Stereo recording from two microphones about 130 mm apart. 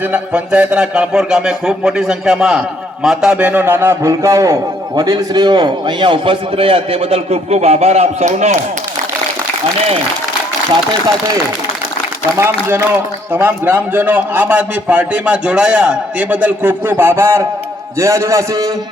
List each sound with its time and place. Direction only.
0.1 s a man's voice: 10° right (ahead or behind); by 8.5 s 65° right (ahead or behind)
12.4 s a man's voice: 20° right (ahead or behind)